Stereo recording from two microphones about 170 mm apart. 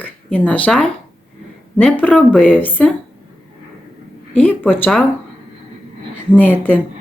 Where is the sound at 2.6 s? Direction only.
10° left (ahead or behind).